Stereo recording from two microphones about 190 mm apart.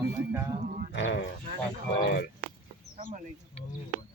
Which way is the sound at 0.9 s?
65° left (ahead or behind).